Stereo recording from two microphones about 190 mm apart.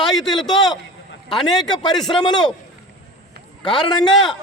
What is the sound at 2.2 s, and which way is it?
Speech, 20° left (ahead or behind).